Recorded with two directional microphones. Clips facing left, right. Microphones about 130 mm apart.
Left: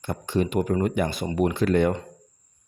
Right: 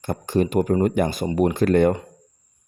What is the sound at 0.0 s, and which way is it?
Speech, 45° right (ahead or behind).